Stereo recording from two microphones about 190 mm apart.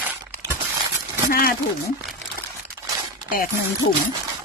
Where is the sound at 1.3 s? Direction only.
50° left (ahead or behind).